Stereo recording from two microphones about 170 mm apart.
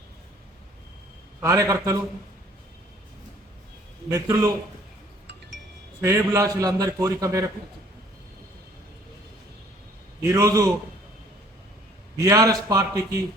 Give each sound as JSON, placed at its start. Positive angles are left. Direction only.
{"t": 1.4, "sound": "a man's voice", "side_deg": -15}
{"t": 4.1, "sound": "a man's voice", "side_deg": -20}
{"t": 6.0, "sound": "a man's voice", "side_deg": -15}
{"t": 10.2, "sound": "a man's voice", "side_deg": -20}
{"t": 12.2, "sound": "a man's voice", "side_deg": -20}